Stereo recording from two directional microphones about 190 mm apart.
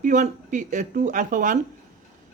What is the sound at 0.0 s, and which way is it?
A woman's voice, 40° right (ahead or behind).